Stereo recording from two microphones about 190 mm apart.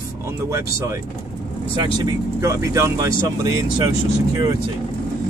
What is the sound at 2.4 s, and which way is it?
Speech, 15° right (ahead or behind).